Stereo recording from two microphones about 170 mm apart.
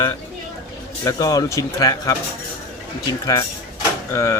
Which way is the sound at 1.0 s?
20° left (ahead or behind).